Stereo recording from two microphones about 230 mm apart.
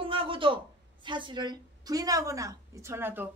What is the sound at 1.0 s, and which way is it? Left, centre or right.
A woman's voice, right.